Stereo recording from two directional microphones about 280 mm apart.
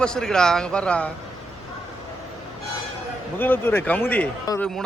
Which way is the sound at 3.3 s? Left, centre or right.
Centre.